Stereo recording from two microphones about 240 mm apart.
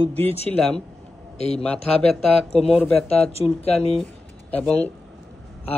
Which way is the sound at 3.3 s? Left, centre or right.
Left.